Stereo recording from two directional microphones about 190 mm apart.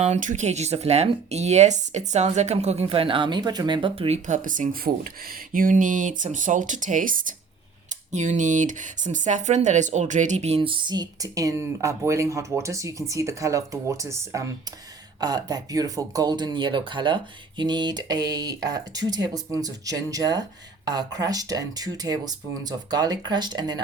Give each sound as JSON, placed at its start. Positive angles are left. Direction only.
{"t": 0.0, "sound": "speech", "side_deg": -40}